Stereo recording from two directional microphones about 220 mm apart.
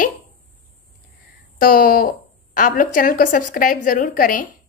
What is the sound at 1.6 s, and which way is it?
A woman's voice, 40° left (ahead or behind).